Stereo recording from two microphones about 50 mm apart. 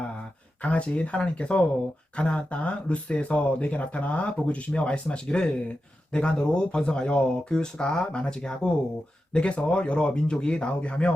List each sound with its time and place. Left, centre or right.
0.6 s speech: left